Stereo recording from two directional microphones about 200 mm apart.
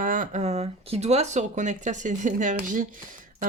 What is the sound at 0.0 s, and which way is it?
Speech, 40° right (ahead or behind).